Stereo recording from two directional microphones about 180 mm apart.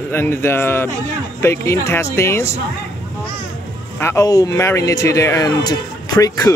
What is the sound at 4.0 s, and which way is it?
Speech, 15° left (ahead or behind).